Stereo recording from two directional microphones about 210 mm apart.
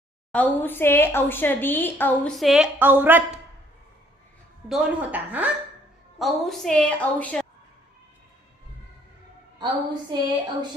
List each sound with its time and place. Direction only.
0.3 s a woman's voice: 10° left (ahead or behind); by 3.4 s 10° right (ahead or behind)
4.7 s a woman's voice: 5° right (ahead or behind)
10.1 s a sound: 20° right (ahead or behind)